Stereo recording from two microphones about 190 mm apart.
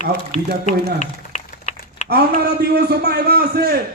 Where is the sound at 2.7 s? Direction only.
55° right (ahead or behind).